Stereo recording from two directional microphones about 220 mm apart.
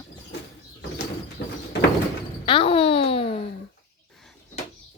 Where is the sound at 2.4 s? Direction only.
25° left (ahead or behind).